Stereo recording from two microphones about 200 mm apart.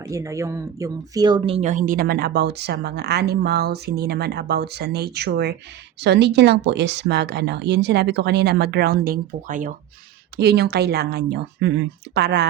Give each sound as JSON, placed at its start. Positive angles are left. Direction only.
{"t": 0.0, "sound": "speech", "side_deg": -15}
{"t": 10.3, "sound": "speech", "side_deg": -55}